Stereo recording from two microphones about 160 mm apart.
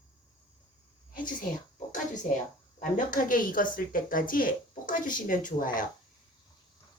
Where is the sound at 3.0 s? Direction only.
55° left (ahead or behind).